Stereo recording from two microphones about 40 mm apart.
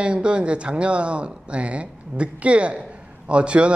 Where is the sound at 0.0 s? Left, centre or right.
Right.